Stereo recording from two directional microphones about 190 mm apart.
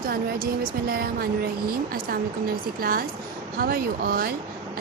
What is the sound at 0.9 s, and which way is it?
Speech, 50° right (ahead or behind).